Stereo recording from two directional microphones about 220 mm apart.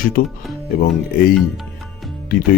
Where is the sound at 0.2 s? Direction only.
40° left (ahead or behind).